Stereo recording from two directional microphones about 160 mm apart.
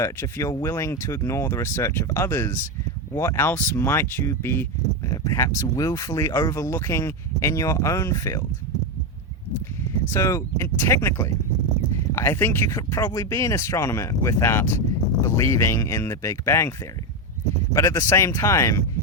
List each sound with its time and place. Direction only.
0.0 s speech: 20° left (ahead or behind)
10.1 s speech: 20° left (ahead or behind)
17.7 s speech: 20° left (ahead or behind)